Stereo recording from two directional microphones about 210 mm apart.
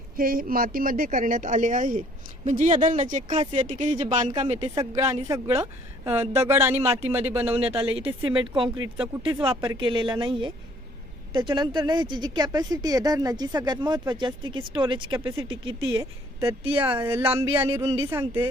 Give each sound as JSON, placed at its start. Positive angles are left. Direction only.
{"t": 0.2, "sound": "speech", "side_deg": -45}
{"t": 5.3, "sound": "speech", "side_deg": -15}
{"t": 7.5, "sound": "a woman's voice", "side_deg": -30}